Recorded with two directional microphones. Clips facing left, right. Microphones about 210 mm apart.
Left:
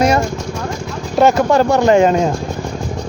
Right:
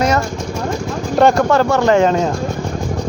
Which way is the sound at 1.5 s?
15° left (ahead or behind).